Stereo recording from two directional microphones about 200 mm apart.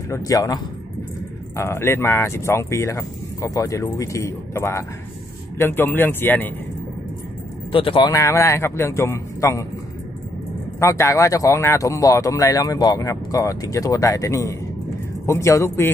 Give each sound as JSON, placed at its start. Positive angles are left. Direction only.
{"t": 0.1, "sound": "speech", "side_deg": 15}
{"t": 1.6, "sound": "speech", "side_deg": 10}
{"t": 7.7, "sound": "speech", "side_deg": 25}
{"t": 8.1, "sound": "speech", "side_deg": 15}
{"t": 10.8, "sound": "speech", "side_deg": 15}